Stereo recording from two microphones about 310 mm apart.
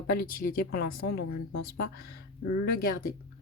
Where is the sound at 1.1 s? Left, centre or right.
Left.